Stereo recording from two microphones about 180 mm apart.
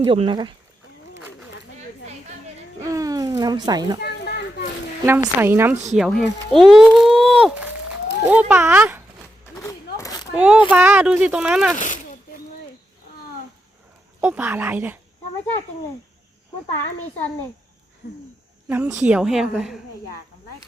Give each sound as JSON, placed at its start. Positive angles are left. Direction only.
{"t": 0.0, "sound": "speech", "side_deg": -30}
{"t": 2.9, "sound": "a sound", "side_deg": -20}
{"t": 4.0, "sound": "children playing", "side_deg": 65}
{"t": 5.0, "sound": "speech", "side_deg": -10}
{"t": 5.7, "sound": "speech", "side_deg": -40}
{"t": 6.0, "sound": "a woman's voice", "side_deg": 0}
{"t": 9.6, "sound": "a sound", "side_deg": 20}
{"t": 10.3, "sound": "speech", "side_deg": -5}
{"t": 14.2, "sound": "speech", "side_deg": -10}
{"t": 18.7, "sound": "a woman's voice", "side_deg": -15}